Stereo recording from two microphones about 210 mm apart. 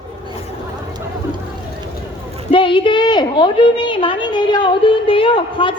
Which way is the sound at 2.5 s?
25° left (ahead or behind).